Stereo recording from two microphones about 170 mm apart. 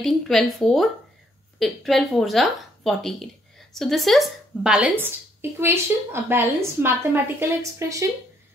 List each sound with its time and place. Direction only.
0.0 s speech: centre (ahead or behind); by 8.0 s 15° right (ahead or behind)